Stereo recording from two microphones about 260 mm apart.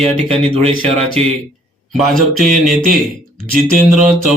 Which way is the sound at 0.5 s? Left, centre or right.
Right.